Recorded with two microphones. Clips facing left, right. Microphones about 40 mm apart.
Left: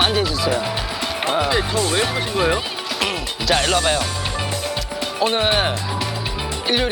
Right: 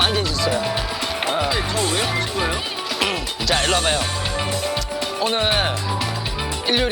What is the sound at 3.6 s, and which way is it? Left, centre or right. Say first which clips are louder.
Speech: left 1 dB; right.